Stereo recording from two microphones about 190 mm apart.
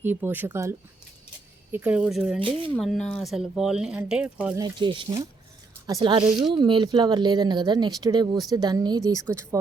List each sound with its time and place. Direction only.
0.0 s speech: 10° right (ahead or behind)
2.4 s speech: 25° right (ahead or behind)
2.7 s speech: centre (ahead or behind)
4.5 s speech: 25° right (ahead or behind)